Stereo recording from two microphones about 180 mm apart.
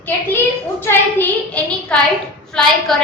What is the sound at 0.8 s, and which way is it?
A woman's voice, 10° left (ahead or behind).